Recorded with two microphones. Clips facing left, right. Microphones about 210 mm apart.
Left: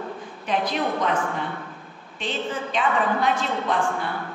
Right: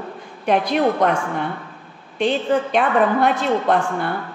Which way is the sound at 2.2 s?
65° right (ahead or behind).